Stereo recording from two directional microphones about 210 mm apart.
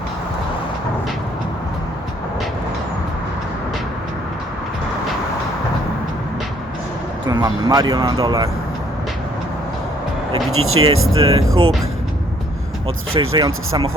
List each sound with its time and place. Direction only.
7.3 s speech: 15° right (ahead or behind)
10.5 s speech: 80° right
11.2 s speech: 30° right (ahead or behind)
11.4 s speech: 80° right
13.1 s speech: 25° right (ahead or behind)